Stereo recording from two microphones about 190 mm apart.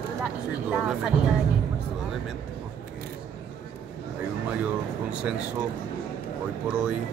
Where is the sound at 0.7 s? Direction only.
5° right (ahead or behind).